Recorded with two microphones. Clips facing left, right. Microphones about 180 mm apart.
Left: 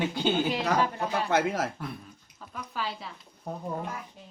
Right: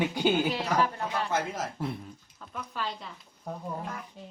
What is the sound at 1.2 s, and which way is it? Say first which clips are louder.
Speech: left 8 dB; 70° left (ahead or behind).